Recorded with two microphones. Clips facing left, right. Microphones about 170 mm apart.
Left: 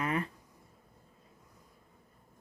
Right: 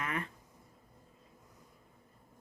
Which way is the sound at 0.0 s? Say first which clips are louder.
Left 5 dB; 35° left (ahead or behind).